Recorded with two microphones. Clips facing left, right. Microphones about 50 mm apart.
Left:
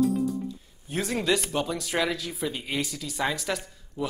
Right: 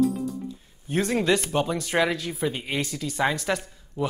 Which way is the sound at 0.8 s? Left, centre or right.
Centre.